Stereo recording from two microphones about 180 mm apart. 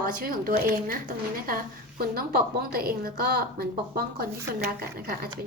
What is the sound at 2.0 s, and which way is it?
A woman's voice, 55° right (ahead or behind).